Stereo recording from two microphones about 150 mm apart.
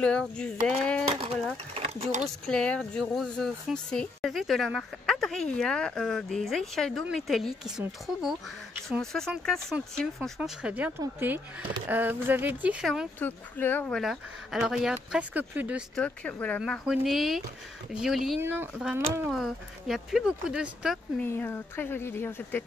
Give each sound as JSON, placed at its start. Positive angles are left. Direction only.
{"t": 0.0, "sound": "speech", "side_deg": 5}
{"t": 1.7, "sound": "speech", "side_deg": -40}
{"t": 2.2, "sound": "speech", "side_deg": 5}
{"t": 8.8, "sound": "speech", "side_deg": 5}
{"t": 13.2, "sound": "speech", "side_deg": 10}
{"t": 16.0, "sound": "speech", "side_deg": 10}
{"t": 18.4, "sound": "speech", "side_deg": -15}
{"t": 19.3, "sound": "speech", "side_deg": 0}
{"t": 21.2, "sound": "speech", "side_deg": 15}